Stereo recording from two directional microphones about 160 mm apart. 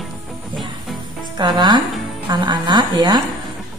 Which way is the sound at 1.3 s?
30° right (ahead or behind).